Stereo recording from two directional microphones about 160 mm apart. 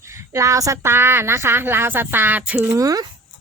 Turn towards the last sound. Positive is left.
turn(degrees=-20)  # may be behind; listen again after turning